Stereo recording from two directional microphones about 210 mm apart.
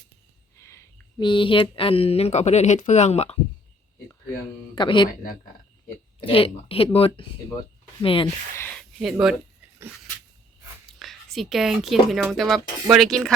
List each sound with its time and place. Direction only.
0.6 s speech: 15° left (ahead or behind); by 3.3 s 30° left (ahead or behind)
4.7 s speech: 20° left (ahead or behind)
6.2 s speech: 25° left (ahead or behind)
8.5 s speech: 5° left (ahead or behind)
11.0 s speech: centre (ahead or behind)